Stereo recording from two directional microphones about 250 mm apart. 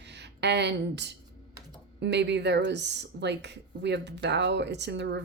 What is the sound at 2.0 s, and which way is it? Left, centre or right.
Speech, right.